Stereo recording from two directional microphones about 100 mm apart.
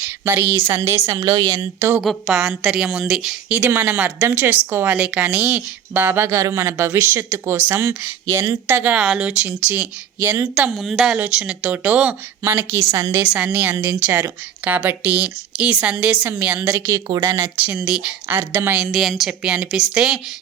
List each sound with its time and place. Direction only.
0.0 s speech: 20° right (ahead or behind)
2.0 s a woman's voice: centre (ahead or behind)
3.5 s a woman's voice: 20° right (ahead or behind)
10.8 s a woman's voice: centre (ahead or behind); by 13.2 s 25° right (ahead or behind)
13.2 s a woman's voice: 10° right (ahead or behind)
16.8 s a woman's voice: 30° right (ahead or behind)
18.9 s a woman's voice: centre (ahead or behind)